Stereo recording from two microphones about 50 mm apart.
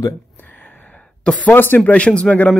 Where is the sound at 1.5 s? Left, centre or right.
Left.